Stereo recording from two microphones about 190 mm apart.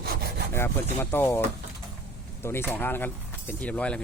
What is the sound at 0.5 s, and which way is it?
Speech, 15° left (ahead or behind).